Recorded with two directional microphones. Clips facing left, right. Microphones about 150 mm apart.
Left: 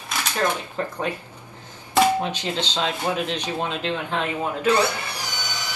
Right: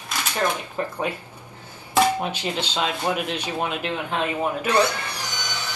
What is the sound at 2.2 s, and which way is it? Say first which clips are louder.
Speech: even; 15° right (ahead or behind).